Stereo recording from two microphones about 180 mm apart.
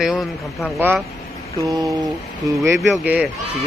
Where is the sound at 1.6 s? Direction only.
20° right (ahead or behind).